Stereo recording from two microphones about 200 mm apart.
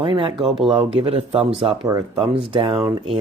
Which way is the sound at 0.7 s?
30° right (ahead or behind).